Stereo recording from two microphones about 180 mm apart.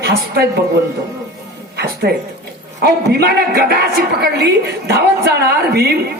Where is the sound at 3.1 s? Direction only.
60° right (ahead or behind).